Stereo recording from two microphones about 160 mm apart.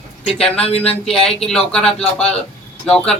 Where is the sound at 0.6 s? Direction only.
40° left (ahead or behind).